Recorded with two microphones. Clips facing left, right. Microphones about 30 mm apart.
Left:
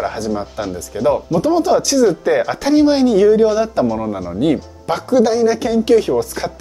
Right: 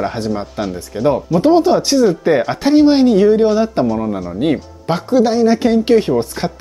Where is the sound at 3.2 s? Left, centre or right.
Centre.